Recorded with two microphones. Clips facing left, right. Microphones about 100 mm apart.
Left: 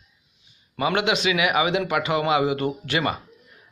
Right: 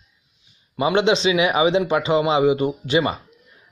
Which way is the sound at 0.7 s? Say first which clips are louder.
Right 5 dB; 25° right (ahead or behind).